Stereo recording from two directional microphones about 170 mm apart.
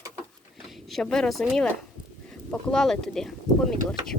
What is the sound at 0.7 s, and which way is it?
Speech, centre (ahead or behind).